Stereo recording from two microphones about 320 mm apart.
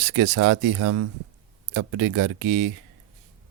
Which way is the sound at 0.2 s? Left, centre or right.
Right.